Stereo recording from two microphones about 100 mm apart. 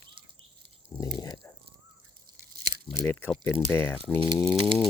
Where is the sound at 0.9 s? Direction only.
10° left (ahead or behind).